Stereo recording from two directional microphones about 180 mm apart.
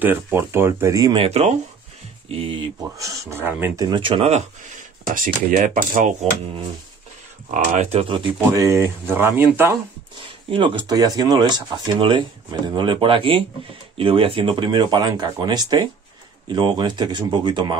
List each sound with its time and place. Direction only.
0.0 s speech: 10° right (ahead or behind); by 6.1 s 45° right (ahead or behind)
7.5 s speech: 40° right (ahead or behind)
8.6 s speech: 15° right (ahead or behind)
10.2 s speech: 30° right (ahead or behind)